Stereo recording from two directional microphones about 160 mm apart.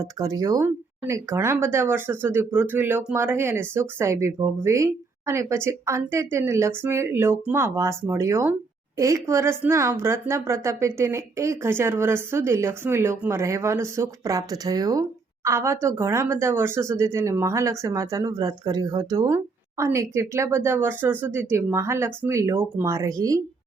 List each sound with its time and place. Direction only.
0.0 s speech: 20° right (ahead or behind)